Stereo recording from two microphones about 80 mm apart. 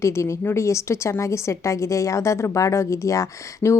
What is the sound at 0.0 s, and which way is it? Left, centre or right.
A woman's voice, left.